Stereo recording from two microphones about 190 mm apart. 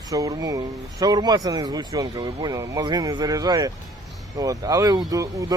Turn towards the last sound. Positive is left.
turn(degrees=-20)  # may be behind; listen again after turning